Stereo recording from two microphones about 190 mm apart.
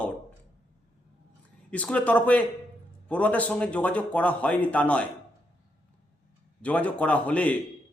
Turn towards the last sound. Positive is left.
turn(degrees=5)  # may be behind; listen again after turning